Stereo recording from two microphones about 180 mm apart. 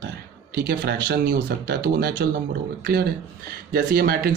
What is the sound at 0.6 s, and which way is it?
Speech, 60° right (ahead or behind).